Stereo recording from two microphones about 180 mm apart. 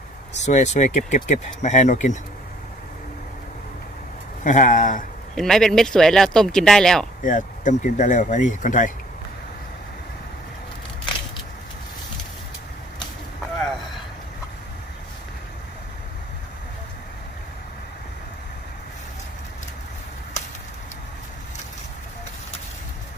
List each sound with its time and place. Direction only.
0.3 s speech: 40° left (ahead or behind)
4.4 s speech: 45° left (ahead or behind)
5.3 s speech: centre (ahead or behind)
7.3 s speech: 45° left (ahead or behind)